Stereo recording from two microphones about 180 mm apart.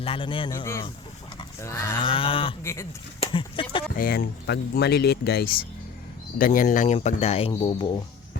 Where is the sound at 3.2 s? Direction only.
30° left (ahead or behind).